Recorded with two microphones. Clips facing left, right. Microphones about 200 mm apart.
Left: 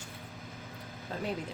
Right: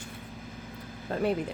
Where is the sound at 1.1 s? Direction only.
55° right (ahead or behind).